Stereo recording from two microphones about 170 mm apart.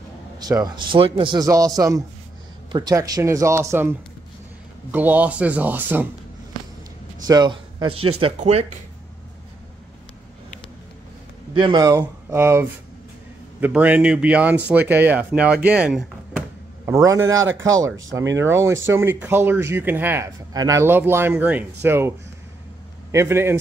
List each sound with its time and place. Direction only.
0.4 s a man's voice: 20° right (ahead or behind)
4.9 s speech: 10° right (ahead or behind)
7.2 s a man's voice: 25° right (ahead or behind); by 8.7 s 40° right (ahead or behind)
11.5 s a man's voice: 25° right (ahead or behind); by 16.4 s 5° right (ahead or behind)
16.8 s a man's voice: 20° right (ahead or behind)
23.1 s speech: 15° right (ahead or behind)